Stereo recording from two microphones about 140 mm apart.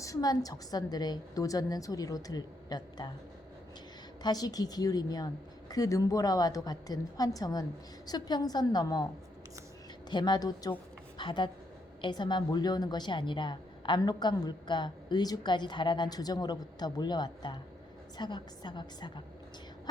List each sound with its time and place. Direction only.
0.0 s a woman's voice: 25° left (ahead or behind)
4.2 s a woman's voice: 30° left (ahead or behind)
10.1 s a woman's voice: 30° left (ahead or behind)